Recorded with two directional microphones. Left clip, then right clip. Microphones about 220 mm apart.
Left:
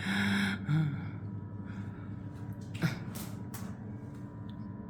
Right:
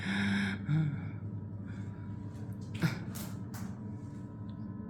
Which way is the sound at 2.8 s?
5° right (ahead or behind).